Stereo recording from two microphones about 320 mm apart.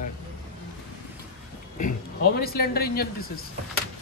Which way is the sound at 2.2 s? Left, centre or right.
Left.